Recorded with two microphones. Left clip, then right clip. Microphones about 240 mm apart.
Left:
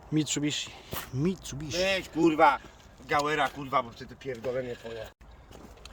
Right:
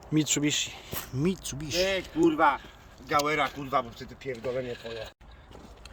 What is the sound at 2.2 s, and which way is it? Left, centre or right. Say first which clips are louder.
Speech: left 1 dB; left.